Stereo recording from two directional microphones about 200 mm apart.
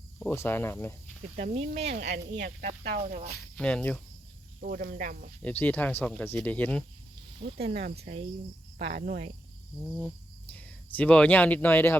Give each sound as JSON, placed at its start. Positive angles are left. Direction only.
{"t": 0.2, "sound": "speech", "side_deg": 10}
{"t": 1.4, "sound": "speech", "side_deg": -30}
{"t": 2.0, "sound": "speech", "side_deg": -60}
{"t": 3.6, "sound": "cricket", "side_deg": 5}
{"t": 4.6, "sound": "speech", "side_deg": -45}
{"t": 5.4, "sound": "speech", "side_deg": 10}
{"t": 7.3, "sound": "speech", "side_deg": -30}
{"t": 7.7, "sound": "speech", "side_deg": -55}
{"t": 7.9, "sound": "speech", "side_deg": -30}
{"t": 8.8, "sound": "speech", "side_deg": -50}
{"t": 10.5, "sound": "speech", "side_deg": 5}